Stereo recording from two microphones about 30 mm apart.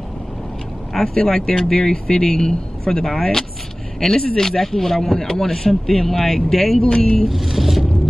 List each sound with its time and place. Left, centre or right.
0.9 s a man's voice: centre
7.2 s vehicle: centre